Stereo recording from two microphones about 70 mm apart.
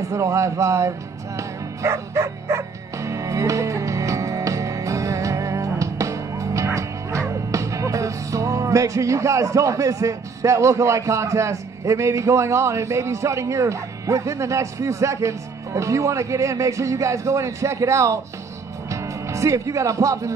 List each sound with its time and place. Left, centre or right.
0.1 s speech: right